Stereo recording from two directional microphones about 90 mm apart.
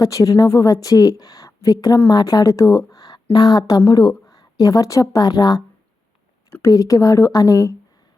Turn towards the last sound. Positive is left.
turn(degrees=40)  # may be behind; listen again after turning